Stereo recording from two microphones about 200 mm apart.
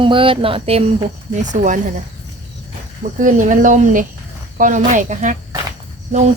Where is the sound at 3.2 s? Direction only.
40° right (ahead or behind).